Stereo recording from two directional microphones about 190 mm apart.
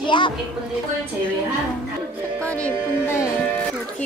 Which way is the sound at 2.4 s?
5° left (ahead or behind).